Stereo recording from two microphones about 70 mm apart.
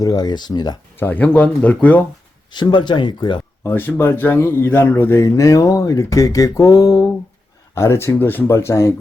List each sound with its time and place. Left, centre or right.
0.0 s speech: left
0.9 s speech: left
2.5 s speech: left
3.6 s speech: left
5.2 s speech: left
7.8 s speech: left
8.4 s speech: left